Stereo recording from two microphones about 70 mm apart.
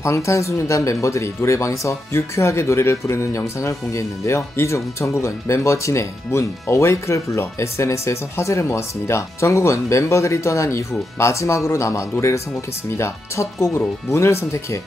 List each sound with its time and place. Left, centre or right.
0.0 s speech: left